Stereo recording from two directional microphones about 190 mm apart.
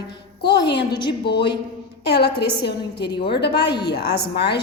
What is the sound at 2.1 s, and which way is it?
A woman's voice, 60° left (ahead or behind).